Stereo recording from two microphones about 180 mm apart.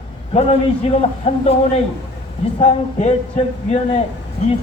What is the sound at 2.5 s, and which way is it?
Speech, 40° left (ahead or behind).